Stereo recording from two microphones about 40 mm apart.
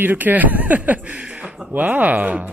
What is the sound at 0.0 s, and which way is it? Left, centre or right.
Speech, right.